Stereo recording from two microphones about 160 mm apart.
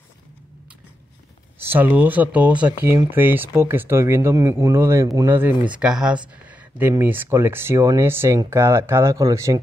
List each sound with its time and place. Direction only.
1.6 s speech: 10° right (ahead or behind)